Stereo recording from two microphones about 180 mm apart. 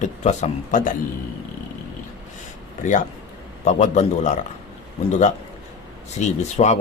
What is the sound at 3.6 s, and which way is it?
Speech, 40° left (ahead or behind).